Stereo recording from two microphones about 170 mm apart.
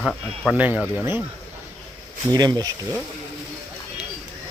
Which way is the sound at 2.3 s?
25° right (ahead or behind).